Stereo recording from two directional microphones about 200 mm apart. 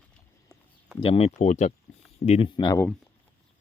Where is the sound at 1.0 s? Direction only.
30° left (ahead or behind).